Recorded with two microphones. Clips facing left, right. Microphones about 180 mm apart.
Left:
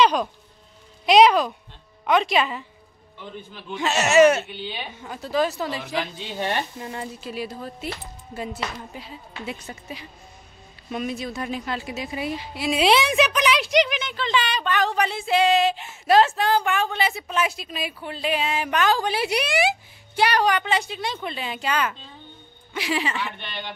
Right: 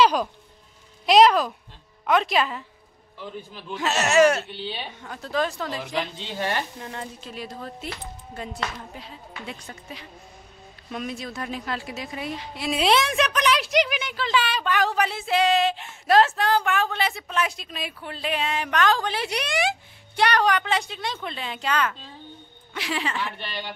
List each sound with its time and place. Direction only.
0.0 s a woman's voice: 5° right (ahead or behind)